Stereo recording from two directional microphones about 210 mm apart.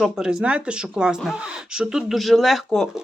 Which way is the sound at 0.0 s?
5° right (ahead or behind).